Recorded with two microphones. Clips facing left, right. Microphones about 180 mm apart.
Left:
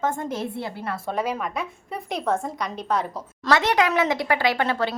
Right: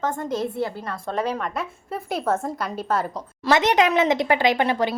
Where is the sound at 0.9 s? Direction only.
5° left (ahead or behind).